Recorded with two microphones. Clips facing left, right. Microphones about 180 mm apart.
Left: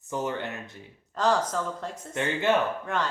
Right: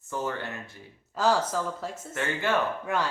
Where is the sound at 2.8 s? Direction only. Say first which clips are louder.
Right 1 dB; 10° right (ahead or behind).